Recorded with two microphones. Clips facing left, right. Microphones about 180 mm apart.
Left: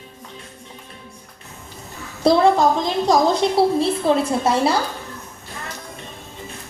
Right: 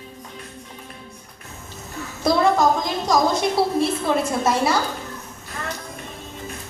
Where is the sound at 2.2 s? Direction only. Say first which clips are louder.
Left 3 dB; 30° left (ahead or behind).